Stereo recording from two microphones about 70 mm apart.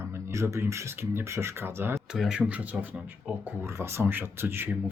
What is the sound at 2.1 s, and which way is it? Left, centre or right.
Speech, centre.